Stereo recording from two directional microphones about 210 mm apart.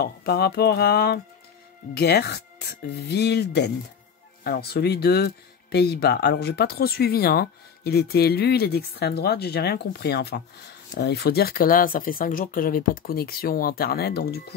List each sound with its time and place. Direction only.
0.0 s speech: 50° left (ahead or behind)